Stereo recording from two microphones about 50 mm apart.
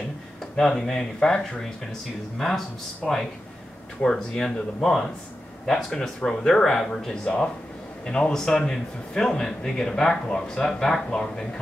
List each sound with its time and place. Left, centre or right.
0.4 s speech: centre
4.0 s speech: centre
7.2 s speech: centre